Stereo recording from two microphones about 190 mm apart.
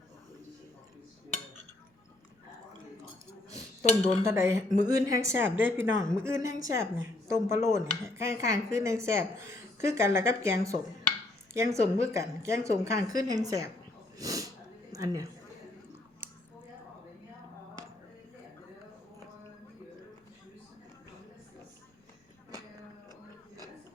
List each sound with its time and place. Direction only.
4.2 s speech: 15° right (ahead or behind)
14.2 s snort: 20° right (ahead or behind)
14.9 s a woman's voice: 20° right (ahead or behind)